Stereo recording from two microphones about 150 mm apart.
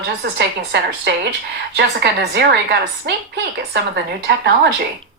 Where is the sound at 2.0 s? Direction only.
90° right.